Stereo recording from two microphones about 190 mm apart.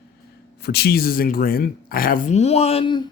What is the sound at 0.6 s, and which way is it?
Speech, 60° left (ahead or behind).